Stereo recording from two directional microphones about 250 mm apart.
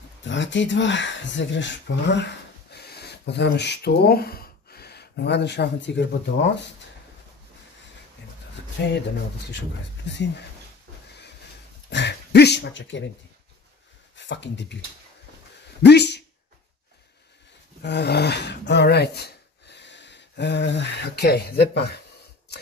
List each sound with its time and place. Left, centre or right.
0.2 s speech: left
8.8 s speech: left
11.9 s speech: left
14.1 s speech: left
15.8 s a sound: left
17.8 s speech: left